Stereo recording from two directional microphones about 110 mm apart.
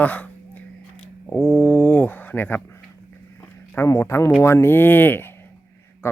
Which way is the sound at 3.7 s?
20° left (ahead or behind).